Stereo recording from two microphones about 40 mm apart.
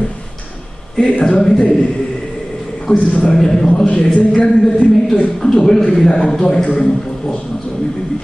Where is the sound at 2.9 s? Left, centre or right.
Left.